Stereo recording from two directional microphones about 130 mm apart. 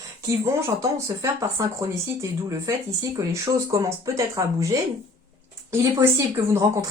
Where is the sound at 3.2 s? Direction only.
25° right (ahead or behind).